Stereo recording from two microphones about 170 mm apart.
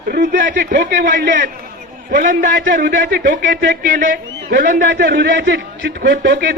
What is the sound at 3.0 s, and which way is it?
Speech, 80° right.